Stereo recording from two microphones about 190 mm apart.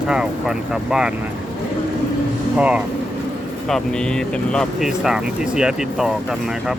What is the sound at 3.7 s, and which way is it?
Speech, 5° left (ahead or behind).